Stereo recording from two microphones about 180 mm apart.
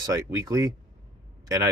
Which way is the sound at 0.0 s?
20° right (ahead or behind).